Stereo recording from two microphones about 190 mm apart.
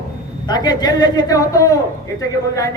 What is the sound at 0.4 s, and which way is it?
A man's voice, 20° left (ahead or behind).